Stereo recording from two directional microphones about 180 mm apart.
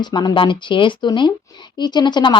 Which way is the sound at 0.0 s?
25° left (ahead or behind).